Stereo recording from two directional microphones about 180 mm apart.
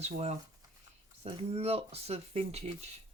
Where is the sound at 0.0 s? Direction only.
40° right (ahead or behind).